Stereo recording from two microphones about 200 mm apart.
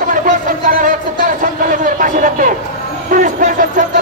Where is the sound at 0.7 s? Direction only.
45° right (ahead or behind).